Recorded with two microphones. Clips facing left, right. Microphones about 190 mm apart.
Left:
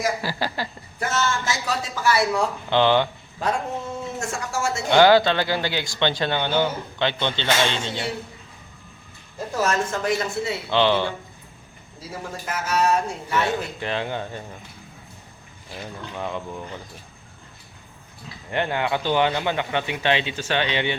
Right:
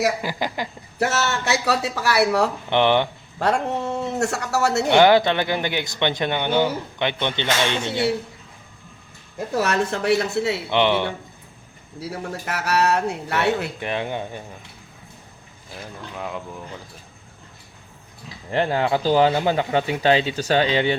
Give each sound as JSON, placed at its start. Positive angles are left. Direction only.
{"t": 0.2, "sound": "speech", "side_deg": -15}
{"t": 0.9, "sound": "a man's voice", "side_deg": -70}
{"t": 2.6, "sound": "speech", "side_deg": -20}
{"t": 3.3, "sound": "a man's voice", "side_deg": -70}
{"t": 4.9, "sound": "speech", "side_deg": -20}
{"t": 9.6, "sound": "a woman's voice", "side_deg": -65}
{"t": 10.7, "sound": "speech", "side_deg": -20}
{"t": 11.9, "sound": "a man's voice", "side_deg": -70}
{"t": 13.8, "sound": "speech", "side_deg": -15}
{"t": 16.1, "sound": "speech", "side_deg": 0}
{"t": 18.5, "sound": "speech", "side_deg": -35}